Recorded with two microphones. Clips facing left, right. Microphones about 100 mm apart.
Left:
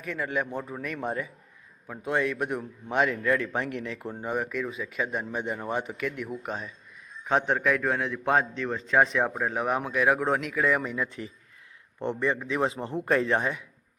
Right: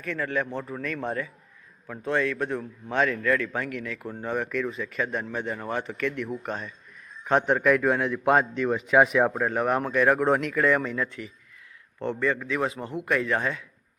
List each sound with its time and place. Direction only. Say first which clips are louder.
0.0 s a man's voice: right 2 dB; 15° left (ahead or behind)